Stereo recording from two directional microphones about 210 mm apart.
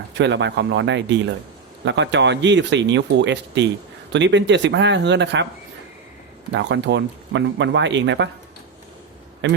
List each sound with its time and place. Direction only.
0.1 s speech: 55° right (ahead or behind)
6.5 s speech: 60° right (ahead or behind)
9.4 s speech: 60° right (ahead or behind)